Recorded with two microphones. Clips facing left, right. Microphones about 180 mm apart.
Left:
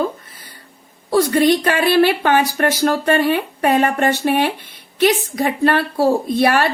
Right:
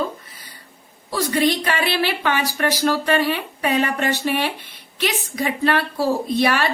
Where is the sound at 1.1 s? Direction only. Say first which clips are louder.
Left 6 dB; 50° left (ahead or behind).